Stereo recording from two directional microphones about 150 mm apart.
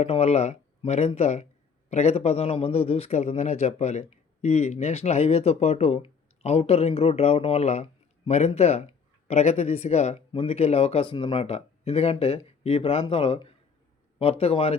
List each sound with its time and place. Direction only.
0.0 s a man's voice: 45° left (ahead or behind)